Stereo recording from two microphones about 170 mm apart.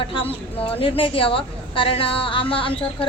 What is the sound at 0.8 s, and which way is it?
A woman's voice, 30° left (ahead or behind).